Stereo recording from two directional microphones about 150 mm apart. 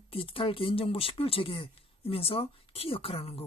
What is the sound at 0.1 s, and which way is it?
Speech, 40° left (ahead or behind).